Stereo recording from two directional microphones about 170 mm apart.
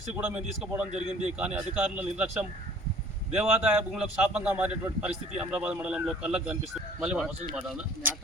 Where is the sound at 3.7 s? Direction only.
5° right (ahead or behind).